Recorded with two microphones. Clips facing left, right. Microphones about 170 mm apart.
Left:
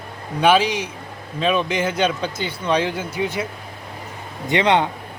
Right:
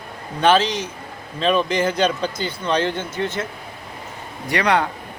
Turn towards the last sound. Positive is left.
turn(degrees=25)  # may be behind; listen again after turning